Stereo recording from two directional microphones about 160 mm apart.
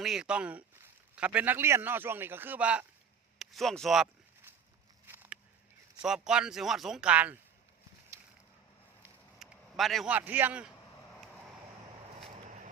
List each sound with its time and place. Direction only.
0.0 s speech: 5° right (ahead or behind)
5.0 s a sound: 10° right (ahead or behind)
6.1 s speech: 5° right (ahead or behind)
9.4 s speech: centre (ahead or behind)
11.1 s vehicle: centre (ahead or behind)
12.2 s vehicle: 50° right (ahead or behind)